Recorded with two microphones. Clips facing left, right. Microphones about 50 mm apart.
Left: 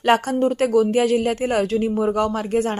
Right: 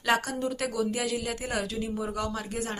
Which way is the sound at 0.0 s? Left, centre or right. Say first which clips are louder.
Left 9 dB; left.